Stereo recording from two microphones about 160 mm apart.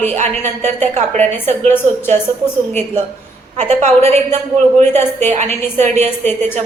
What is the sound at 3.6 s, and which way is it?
Speech, 45° right (ahead or behind).